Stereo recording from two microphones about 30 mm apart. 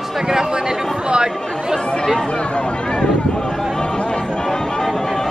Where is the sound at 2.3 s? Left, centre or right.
Left.